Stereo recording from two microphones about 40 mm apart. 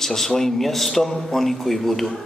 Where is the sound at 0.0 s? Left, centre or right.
Centre.